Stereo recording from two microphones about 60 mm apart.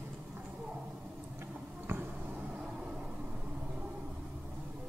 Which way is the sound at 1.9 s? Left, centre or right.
Right.